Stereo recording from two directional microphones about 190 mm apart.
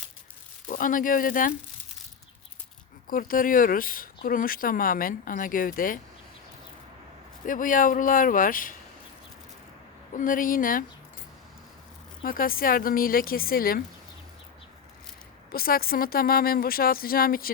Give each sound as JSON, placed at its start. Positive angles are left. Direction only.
{"t": 0.7, "sound": "speech", "side_deg": 45}
{"t": 3.1, "sound": "speech", "side_deg": 45}
{"t": 7.4, "sound": "speech", "side_deg": 45}
{"t": 10.2, "sound": "speech", "side_deg": 45}
{"t": 12.2, "sound": "speech", "side_deg": 50}
{"t": 15.5, "sound": "speech", "side_deg": 50}